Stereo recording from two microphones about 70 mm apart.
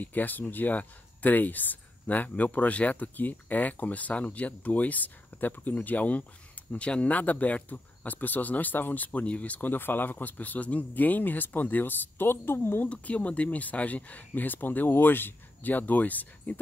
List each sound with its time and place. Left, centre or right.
0.0 s speech: left
12.8 s speech: centre